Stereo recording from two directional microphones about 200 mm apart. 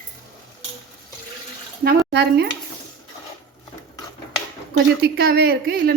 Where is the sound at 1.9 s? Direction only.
55° right (ahead or behind).